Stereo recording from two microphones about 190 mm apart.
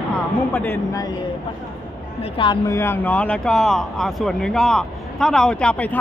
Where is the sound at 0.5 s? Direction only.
10° left (ahead or behind).